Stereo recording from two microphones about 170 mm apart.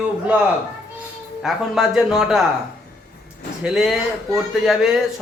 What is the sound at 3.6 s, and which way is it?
Speech, centre (ahead or behind).